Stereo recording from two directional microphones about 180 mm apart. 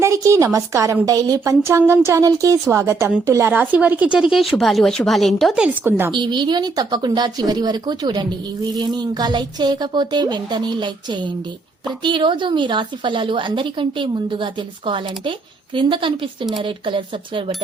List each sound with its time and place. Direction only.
0.0 s a woman's voice: 15° right (ahead or behind)
6.1 s a woman's voice: 25° right (ahead or behind)